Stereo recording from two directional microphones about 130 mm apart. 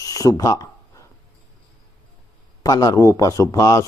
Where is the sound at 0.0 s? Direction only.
25° left (ahead or behind).